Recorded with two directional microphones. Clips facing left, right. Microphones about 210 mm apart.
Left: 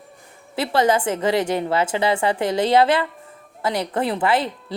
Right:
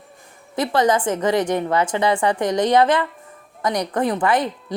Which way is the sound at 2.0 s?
25° left (ahead or behind).